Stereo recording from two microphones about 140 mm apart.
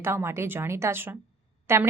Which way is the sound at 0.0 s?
15° right (ahead or behind).